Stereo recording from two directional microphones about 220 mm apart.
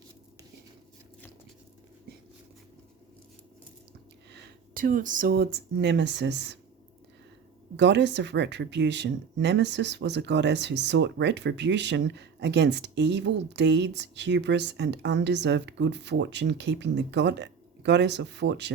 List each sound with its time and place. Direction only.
4.3 s speech: 40° right (ahead or behind)
7.8 s speech: 50° right (ahead or behind)